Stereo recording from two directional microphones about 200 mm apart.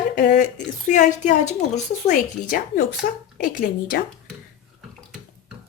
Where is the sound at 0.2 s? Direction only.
40° left (ahead or behind).